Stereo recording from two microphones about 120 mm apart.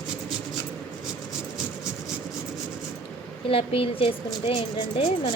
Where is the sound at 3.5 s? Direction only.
50° left (ahead or behind).